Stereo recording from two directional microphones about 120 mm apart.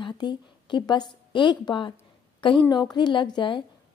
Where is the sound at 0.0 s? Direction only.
40° left (ahead or behind).